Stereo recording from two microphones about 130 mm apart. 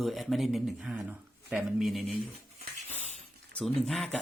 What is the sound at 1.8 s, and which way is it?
Speech, centre (ahead or behind).